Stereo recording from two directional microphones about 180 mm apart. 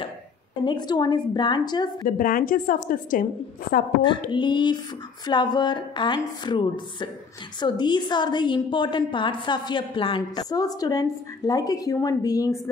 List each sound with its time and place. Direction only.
0.7 s a woman's voice: 25° left (ahead or behind)
2.0 s a woman's voice: 50° left (ahead or behind)
4.3 s a woman's voice: 25° left (ahead or behind)